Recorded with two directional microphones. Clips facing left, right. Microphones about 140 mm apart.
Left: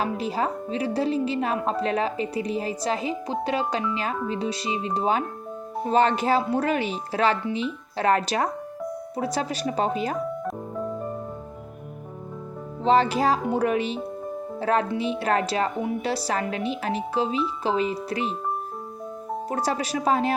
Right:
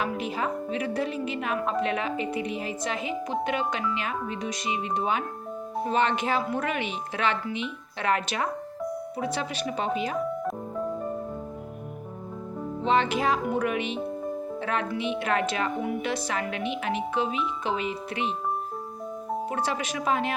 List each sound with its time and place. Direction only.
0.0 s a woman's voice: 35° left (ahead or behind)
12.8 s a woman's voice: 35° left (ahead or behind)
19.5 s a woman's voice: 40° left (ahead or behind)